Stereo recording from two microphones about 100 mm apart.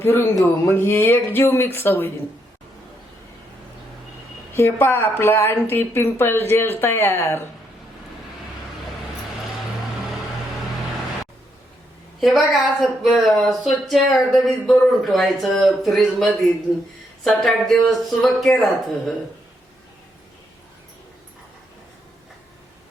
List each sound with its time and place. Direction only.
0.0 s speech: 25° left (ahead or behind)
4.5 s speech: 25° left (ahead or behind)
12.2 s speech: centre (ahead or behind)